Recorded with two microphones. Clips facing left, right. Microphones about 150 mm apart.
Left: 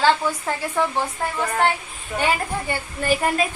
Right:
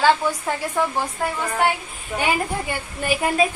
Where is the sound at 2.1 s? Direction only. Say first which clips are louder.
Even; 10° right (ahead or behind).